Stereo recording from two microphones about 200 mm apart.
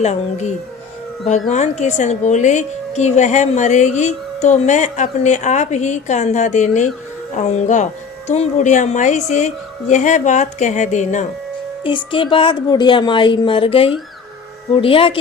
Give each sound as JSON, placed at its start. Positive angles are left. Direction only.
{"t": 0.0, "sound": "a woman's voice", "side_deg": 35}
{"t": 11.8, "sound": "a woman's voice", "side_deg": 25}